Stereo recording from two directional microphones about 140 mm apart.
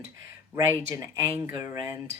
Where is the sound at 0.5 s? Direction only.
20° right (ahead or behind).